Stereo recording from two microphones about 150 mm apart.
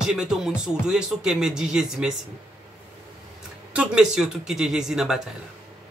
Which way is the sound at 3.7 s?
5° right (ahead or behind).